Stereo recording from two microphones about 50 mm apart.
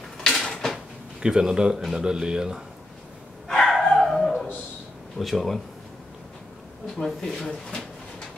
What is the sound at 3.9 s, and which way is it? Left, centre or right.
Dog, centre.